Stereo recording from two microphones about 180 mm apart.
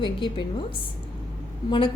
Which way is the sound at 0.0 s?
25° left (ahead or behind).